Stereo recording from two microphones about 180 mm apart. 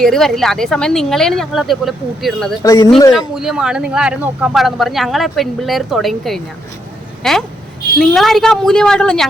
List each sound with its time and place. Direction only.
0.0 s speech: centre (ahead or behind)
2.6 s speech: 20° left (ahead or behind)
3.3 s speech: 5° right (ahead or behind)